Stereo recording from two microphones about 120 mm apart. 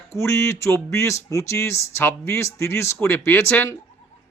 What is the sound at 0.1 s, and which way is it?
Speech, 25° left (ahead or behind).